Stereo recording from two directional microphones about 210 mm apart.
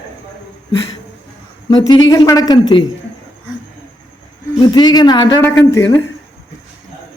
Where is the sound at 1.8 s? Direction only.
20° left (ahead or behind).